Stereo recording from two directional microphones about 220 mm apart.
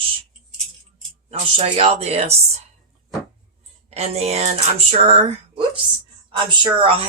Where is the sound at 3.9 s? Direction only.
30° right (ahead or behind).